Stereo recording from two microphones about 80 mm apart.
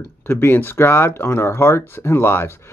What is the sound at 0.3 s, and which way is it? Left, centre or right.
Speech, left.